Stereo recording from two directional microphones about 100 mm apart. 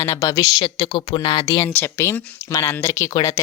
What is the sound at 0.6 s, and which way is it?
Speech, 65° left (ahead or behind).